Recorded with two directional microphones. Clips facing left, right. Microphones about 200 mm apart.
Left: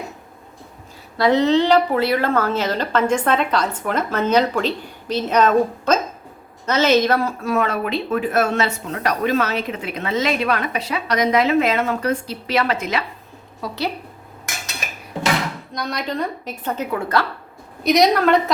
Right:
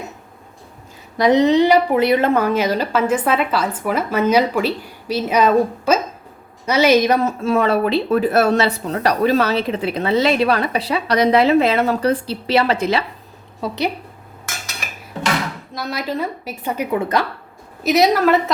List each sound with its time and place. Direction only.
1.1 s speech: 15° right (ahead or behind)
13.6 s speech: 20° right (ahead or behind)
15.7 s speech: 5° right (ahead or behind)
17.8 s a woman's voice: 5° right (ahead or behind)